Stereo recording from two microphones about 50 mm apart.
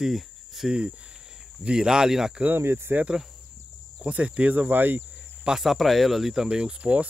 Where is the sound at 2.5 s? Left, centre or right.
Right.